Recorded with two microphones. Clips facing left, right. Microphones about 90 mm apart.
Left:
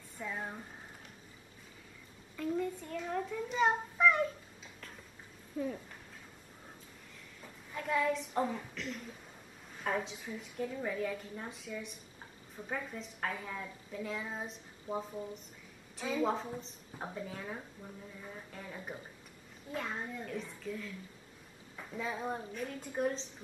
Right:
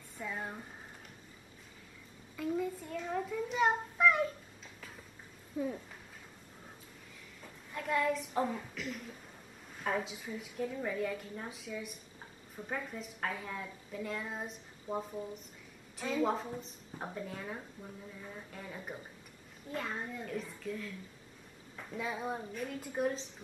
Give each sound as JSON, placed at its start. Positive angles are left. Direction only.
{"t": 0.2, "sound": "a woman's voice", "side_deg": 0}
{"t": 2.3, "sound": "a child's voice", "side_deg": -5}
{"t": 5.5, "sound": "a woman's voice", "side_deg": -5}
{"t": 7.4, "sound": "a woman's voice", "side_deg": 0}